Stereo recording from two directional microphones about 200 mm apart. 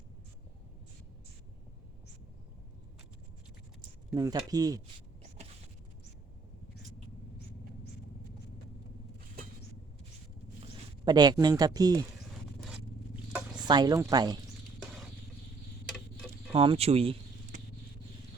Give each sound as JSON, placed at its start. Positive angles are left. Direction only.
{"t": 4.1, "sound": "speech", "side_deg": -15}
{"t": 11.0, "sound": "speech", "side_deg": -20}
{"t": 12.5, "sound": "zipper", "side_deg": 0}
{"t": 13.7, "sound": "speech", "side_deg": -20}
{"t": 16.5, "sound": "speech", "side_deg": -30}